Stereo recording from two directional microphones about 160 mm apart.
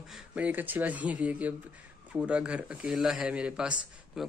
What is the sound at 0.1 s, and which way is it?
Speech, 10° right (ahead or behind).